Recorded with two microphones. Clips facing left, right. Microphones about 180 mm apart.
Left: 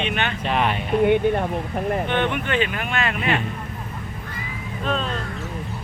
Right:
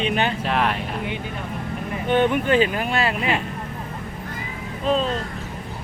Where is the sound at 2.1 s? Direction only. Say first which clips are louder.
Right 4 dB; 40° right (ahead or behind).